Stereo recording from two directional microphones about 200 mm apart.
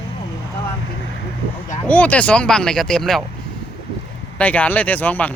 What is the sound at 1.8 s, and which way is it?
Speech, 5° left (ahead or behind).